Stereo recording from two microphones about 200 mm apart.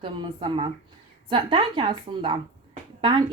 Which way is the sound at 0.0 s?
25° right (ahead or behind).